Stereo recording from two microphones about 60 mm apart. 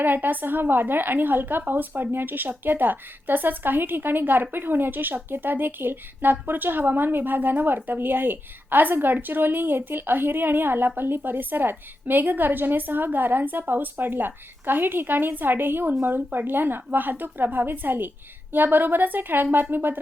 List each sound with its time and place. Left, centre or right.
0.0 s a woman's voice: right